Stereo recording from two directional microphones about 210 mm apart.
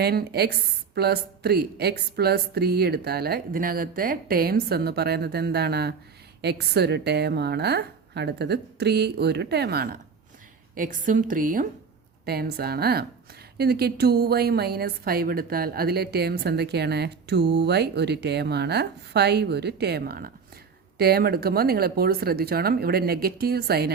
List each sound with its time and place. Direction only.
0.0 s a woman's voice: 50° right (ahead or behind)